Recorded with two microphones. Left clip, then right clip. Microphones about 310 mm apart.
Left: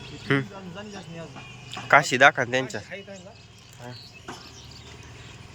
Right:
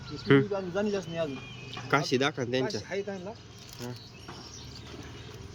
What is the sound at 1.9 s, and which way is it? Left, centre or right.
Speech, centre.